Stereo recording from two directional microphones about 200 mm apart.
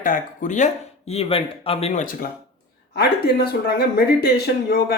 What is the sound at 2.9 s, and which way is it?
Speech, 55° left (ahead or behind).